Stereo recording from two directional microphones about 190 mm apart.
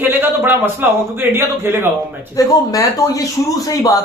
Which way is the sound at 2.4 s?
20° left (ahead or behind).